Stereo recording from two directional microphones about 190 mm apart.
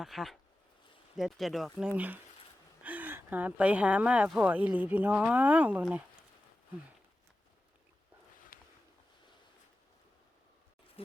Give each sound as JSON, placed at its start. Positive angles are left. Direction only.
{"t": 0.0, "sound": "speech", "side_deg": 0}